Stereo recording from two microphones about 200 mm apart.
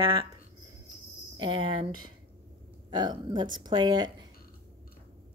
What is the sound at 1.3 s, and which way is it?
Speech, 25° right (ahead or behind).